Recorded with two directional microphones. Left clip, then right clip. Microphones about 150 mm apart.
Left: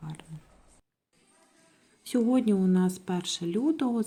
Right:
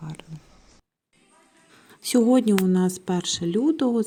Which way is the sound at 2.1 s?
40° right (ahead or behind).